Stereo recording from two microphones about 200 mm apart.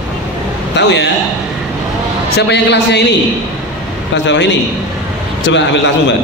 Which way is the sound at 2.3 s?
60° left (ahead or behind).